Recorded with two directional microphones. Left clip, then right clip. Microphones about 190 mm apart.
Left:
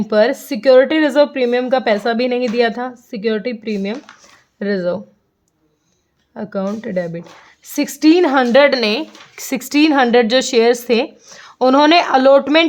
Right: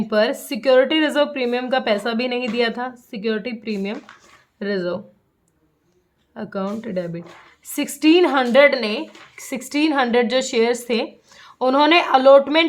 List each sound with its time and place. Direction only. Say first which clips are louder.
0.1 s speech: left 5 dB; 25° left (ahead or behind)
6.3 s a woman's voice: left 4 dB; 25° left (ahead or behind)